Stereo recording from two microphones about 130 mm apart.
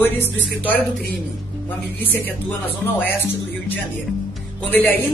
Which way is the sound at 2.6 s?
15° left (ahead or behind).